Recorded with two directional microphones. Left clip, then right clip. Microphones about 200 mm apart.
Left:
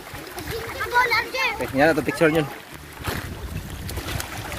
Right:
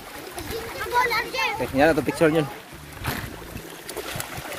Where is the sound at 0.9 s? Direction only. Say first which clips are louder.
Left 2 dB; 40° right (ahead or behind).